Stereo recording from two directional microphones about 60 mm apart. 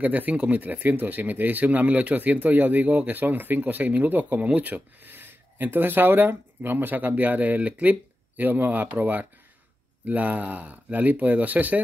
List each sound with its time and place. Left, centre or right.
0.0 s speech: right